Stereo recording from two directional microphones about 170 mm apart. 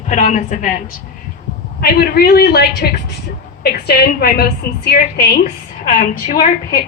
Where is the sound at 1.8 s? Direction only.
65° left (ahead or behind).